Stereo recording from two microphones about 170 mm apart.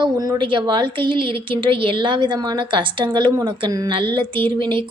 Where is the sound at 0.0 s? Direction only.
25° right (ahead or behind).